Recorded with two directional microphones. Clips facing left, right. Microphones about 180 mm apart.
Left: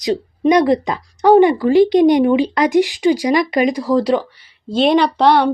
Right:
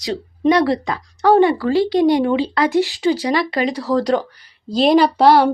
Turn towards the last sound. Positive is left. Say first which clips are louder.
# right 1 dB
turn(degrees=-5)  # may be behind; listen again after turning